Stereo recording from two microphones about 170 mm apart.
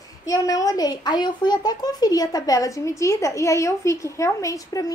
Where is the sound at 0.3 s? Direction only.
20° left (ahead or behind).